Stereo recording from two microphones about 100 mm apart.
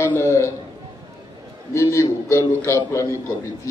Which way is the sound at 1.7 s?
30° left (ahead or behind).